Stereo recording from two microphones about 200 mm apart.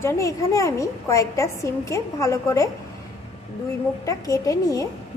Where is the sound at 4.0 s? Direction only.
15° left (ahead or behind).